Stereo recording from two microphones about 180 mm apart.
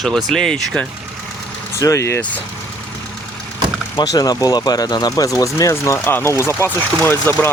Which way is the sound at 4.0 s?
20° left (ahead or behind).